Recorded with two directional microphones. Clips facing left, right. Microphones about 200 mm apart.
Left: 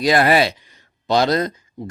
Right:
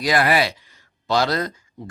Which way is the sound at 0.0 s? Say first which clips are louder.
Left 4 dB; 25° left (ahead or behind).